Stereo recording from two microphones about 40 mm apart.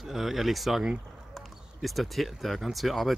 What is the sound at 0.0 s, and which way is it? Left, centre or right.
Speech, centre.